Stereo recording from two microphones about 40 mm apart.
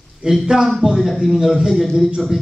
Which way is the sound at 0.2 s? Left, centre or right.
Centre.